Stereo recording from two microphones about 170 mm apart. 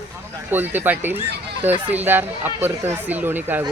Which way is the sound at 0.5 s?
10° right (ahead or behind).